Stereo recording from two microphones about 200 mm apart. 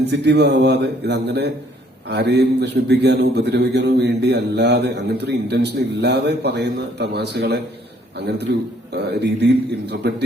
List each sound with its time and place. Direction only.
0.1 s a man's voice: 55° right (ahead or behind)